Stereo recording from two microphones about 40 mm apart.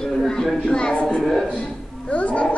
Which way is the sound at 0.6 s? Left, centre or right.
Left.